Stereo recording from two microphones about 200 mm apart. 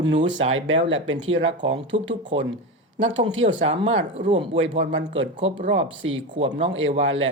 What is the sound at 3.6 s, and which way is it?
Speech, 30° right (ahead or behind).